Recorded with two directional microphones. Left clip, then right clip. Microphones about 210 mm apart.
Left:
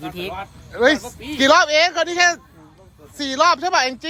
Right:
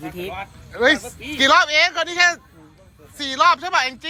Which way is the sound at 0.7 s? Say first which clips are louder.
Left 1 dB; 15° left (ahead or behind).